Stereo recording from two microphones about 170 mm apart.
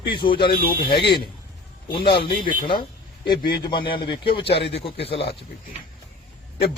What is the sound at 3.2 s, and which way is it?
Speech, 25° left (ahead or behind).